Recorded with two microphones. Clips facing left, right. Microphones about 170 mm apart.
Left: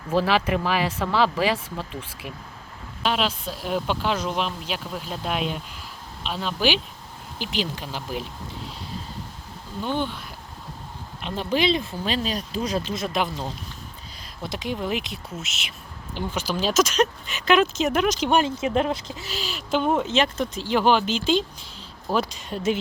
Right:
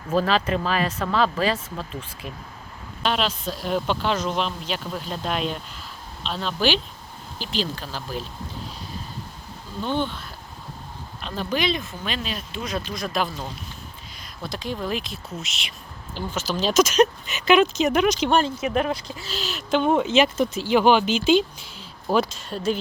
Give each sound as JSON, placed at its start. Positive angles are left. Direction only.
{"t": 0.1, "sound": "speech", "side_deg": 10}
{"t": 9.8, "sound": "speech", "side_deg": 10}
{"t": 11.2, "sound": "speech", "side_deg": 20}
{"t": 15.4, "sound": "speech", "side_deg": 5}
{"t": 16.8, "sound": "speech", "side_deg": -5}
{"t": 18.6, "sound": "speech", "side_deg": 25}
{"t": 19.5, "sound": "speech", "side_deg": 5}
{"t": 22.4, "sound": "speech", "side_deg": 20}